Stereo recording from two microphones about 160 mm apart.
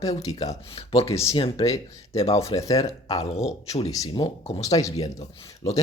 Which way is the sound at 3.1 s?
40° left (ahead or behind).